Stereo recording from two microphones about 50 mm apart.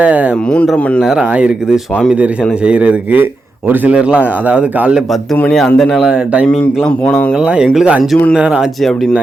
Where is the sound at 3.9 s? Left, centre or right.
Right.